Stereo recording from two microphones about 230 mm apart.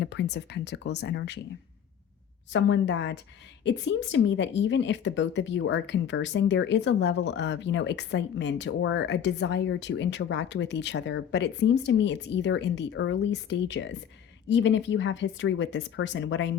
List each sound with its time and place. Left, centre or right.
0.0 s speech: left
2.5 s speech: left